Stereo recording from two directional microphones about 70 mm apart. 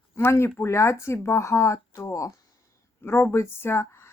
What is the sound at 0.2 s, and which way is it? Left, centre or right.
Speech, left.